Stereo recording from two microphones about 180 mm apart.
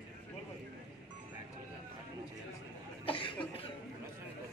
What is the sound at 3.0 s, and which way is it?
Cough, 30° left (ahead or behind).